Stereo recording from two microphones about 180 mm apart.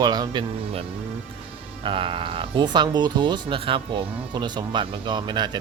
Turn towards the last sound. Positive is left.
turn(degrees=-25)  # may be behind; listen again after turning